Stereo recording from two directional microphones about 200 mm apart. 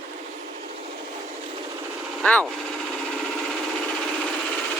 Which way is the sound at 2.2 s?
5° left (ahead or behind).